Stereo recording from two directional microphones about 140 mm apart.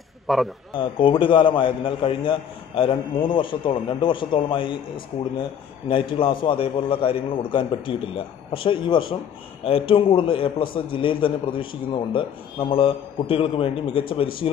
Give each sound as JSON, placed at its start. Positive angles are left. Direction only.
{"t": 0.3, "sound": "speech", "side_deg": 0}
{"t": 0.7, "sound": "a man's voice", "side_deg": 35}